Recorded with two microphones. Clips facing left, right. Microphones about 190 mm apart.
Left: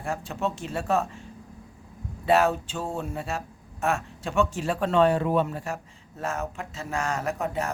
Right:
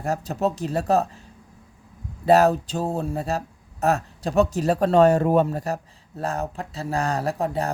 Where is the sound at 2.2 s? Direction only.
40° right (ahead or behind).